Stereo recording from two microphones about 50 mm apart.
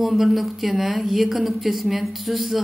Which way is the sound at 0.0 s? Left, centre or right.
Centre.